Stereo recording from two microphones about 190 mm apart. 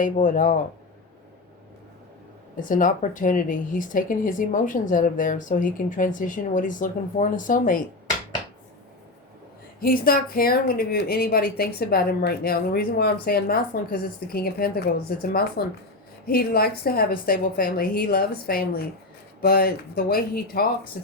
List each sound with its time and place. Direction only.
0.0 s speech: 45° left (ahead or behind)
2.6 s speech: 45° left (ahead or behind)
9.8 s speech: 50° left (ahead or behind)